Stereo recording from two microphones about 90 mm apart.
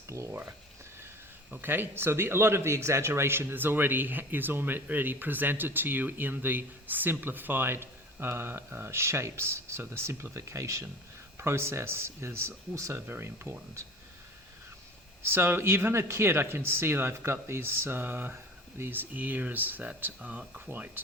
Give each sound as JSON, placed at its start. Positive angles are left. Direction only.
{"t": 0.1, "sound": "a sound", "side_deg": -30}
{"t": 1.6, "sound": "speech", "side_deg": -25}
{"t": 15.2, "sound": "speech", "side_deg": -25}
{"t": 20.7, "sound": "speech", "side_deg": -20}